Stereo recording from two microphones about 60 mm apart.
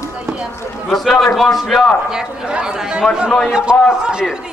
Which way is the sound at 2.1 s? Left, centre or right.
Centre.